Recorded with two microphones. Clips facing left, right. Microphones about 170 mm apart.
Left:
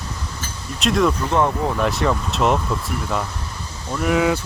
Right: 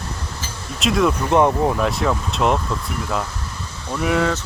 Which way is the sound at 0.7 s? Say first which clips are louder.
Even; centre (ahead or behind).